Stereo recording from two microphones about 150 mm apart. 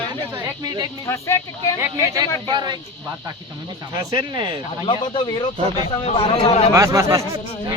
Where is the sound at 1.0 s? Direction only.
20° left (ahead or behind).